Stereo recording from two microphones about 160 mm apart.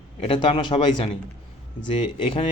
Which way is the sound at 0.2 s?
30° left (ahead or behind).